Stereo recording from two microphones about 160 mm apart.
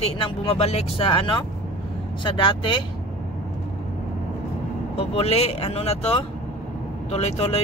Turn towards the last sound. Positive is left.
turn(degrees=40)  # may be behind; listen again after turning